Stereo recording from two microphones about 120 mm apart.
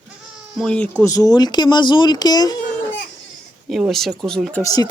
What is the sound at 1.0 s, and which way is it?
Speech, 30° left (ahead or behind).